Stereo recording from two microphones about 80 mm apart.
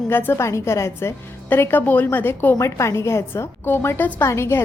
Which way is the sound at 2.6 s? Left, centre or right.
Left.